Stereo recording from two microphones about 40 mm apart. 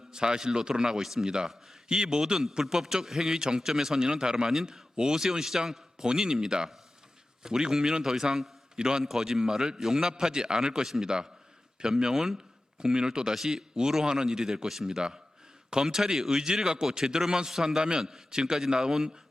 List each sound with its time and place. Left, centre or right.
0.1 s a man's voice: centre